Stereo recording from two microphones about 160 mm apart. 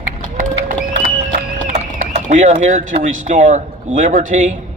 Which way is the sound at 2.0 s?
50° right (ahead or behind).